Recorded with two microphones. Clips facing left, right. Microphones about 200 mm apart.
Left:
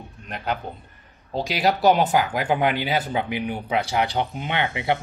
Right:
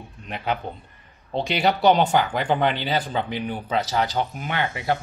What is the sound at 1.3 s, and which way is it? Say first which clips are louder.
Speech: even; centre (ahead or behind).